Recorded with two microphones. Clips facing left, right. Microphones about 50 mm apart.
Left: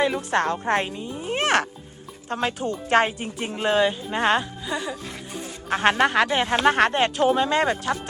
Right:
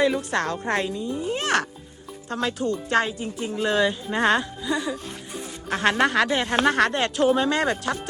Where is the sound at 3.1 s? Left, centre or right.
Left.